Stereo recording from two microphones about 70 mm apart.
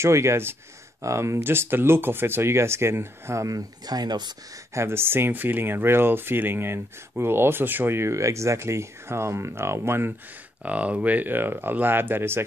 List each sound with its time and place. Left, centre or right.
0.0 s speech: right
3.4 s speech: right
4.7 s speech: right
10.6 s speech: centre